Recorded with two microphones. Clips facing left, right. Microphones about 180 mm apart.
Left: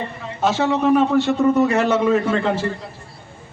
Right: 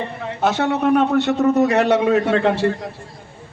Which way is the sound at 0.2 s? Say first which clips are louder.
Even; 60° right (ahead or behind).